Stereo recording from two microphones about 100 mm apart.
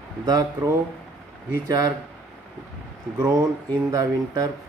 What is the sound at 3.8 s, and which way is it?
Speech, 35° right (ahead or behind).